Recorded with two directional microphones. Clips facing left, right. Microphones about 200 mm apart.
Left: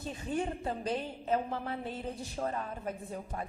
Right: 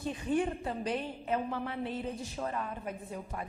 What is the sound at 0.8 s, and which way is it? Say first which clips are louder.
A woman's voice: right 1 dB; 35° left (ahead or behind).